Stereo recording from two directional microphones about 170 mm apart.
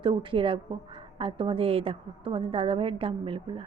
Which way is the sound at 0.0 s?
30° right (ahead or behind).